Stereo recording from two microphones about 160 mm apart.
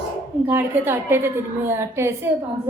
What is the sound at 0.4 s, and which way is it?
A woman's voice, 15° right (ahead or behind).